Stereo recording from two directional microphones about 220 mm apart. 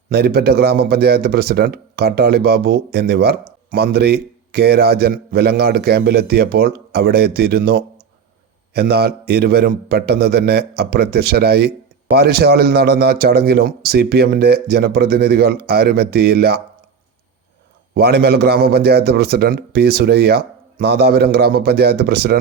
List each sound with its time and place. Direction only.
0.1 s a man's voice: 45° right (ahead or behind)
17.9 s a man's voice: 45° right (ahead or behind)